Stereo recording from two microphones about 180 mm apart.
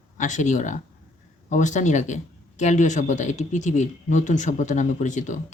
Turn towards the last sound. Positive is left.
turn(degrees=40)  # may be behind; listen again after turning